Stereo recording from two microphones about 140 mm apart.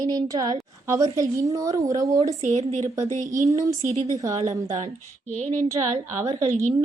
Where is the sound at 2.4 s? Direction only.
55° right (ahead or behind).